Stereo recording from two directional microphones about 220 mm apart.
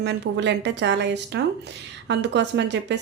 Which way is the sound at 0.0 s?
50° right (ahead or behind).